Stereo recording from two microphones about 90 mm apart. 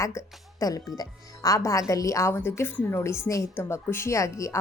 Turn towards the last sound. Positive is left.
turn(degrees=35)  # may be behind; listen again after turning